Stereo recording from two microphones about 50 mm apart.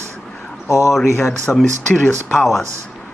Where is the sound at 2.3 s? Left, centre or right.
Centre.